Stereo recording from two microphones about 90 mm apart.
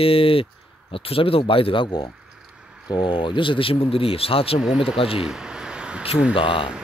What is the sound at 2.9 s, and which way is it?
Speech, 50° left (ahead or behind).